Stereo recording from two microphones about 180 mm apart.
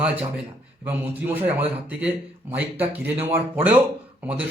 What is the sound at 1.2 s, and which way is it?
A man's voice, 10° right (ahead or behind).